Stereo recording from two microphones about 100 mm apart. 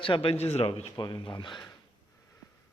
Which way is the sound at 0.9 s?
50° left (ahead or behind).